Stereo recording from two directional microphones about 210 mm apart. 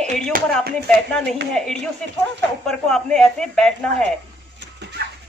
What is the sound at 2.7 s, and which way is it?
Speech, centre (ahead or behind).